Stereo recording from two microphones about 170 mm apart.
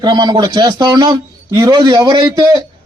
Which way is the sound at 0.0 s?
25° right (ahead or behind).